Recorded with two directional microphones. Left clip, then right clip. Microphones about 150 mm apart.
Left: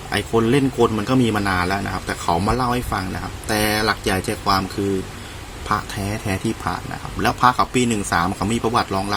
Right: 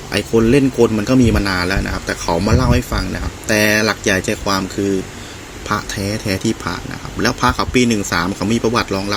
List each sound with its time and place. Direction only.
0.1 s speech: 20° right (ahead or behind)
6.1 s speech: 10° right (ahead or behind)